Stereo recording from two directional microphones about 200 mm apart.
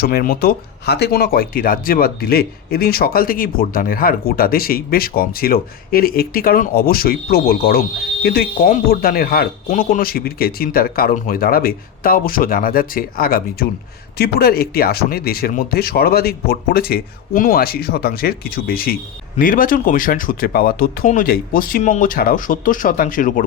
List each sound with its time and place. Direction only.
0.0 s speech: 50° left (ahead or behind)